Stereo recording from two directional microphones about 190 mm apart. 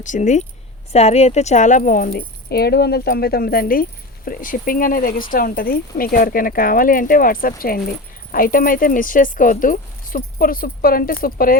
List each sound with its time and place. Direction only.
0.0 s speech: 40° left (ahead or behind)